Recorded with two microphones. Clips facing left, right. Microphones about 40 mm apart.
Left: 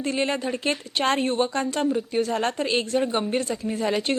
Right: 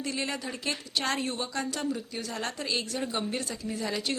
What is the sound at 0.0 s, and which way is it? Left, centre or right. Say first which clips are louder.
Speech: left 8 dB; left.